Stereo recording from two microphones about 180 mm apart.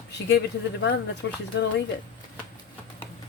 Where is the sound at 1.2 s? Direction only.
90° left.